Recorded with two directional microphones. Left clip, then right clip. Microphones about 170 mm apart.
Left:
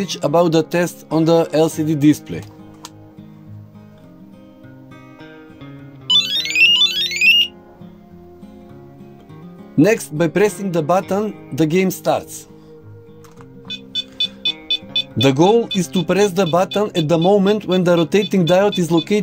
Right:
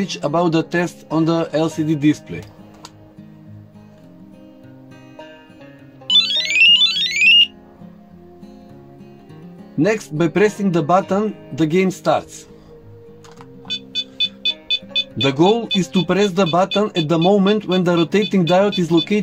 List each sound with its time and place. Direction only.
0.0 s speech: 60° left (ahead or behind)
6.0 s music: 5° left (ahead or behind)
9.8 s speech: 60° left (ahead or behind)
14.1 s music: centre (ahead or behind)
15.1 s speech: 60° left (ahead or behind)